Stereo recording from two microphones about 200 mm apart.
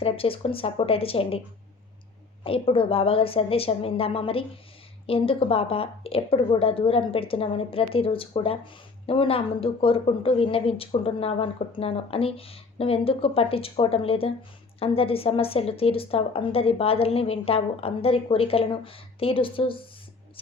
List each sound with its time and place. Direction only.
0.0 s speech: 30° left (ahead or behind)
2.4 s speech: 25° left (ahead or behind)